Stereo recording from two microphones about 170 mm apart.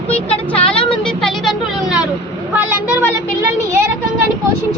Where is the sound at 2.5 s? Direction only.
10° right (ahead or behind).